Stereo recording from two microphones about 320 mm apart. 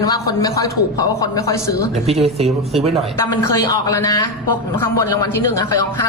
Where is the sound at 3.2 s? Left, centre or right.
Centre.